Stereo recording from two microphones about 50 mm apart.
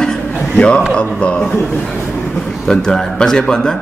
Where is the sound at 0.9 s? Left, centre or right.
Left.